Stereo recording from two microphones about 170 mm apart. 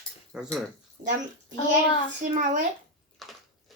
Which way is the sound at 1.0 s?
50° right (ahead or behind).